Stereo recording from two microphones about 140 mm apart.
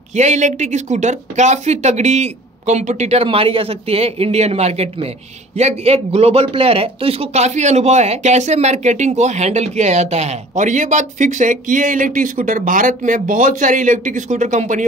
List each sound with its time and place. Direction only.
0.1 s a man's voice: 55° right (ahead or behind)